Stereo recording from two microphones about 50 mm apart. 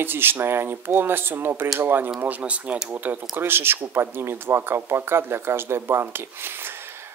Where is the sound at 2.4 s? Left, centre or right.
Right.